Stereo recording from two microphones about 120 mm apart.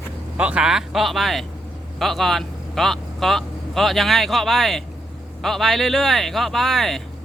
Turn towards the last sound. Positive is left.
turn(degrees=0)  # may be behind; listen again after turning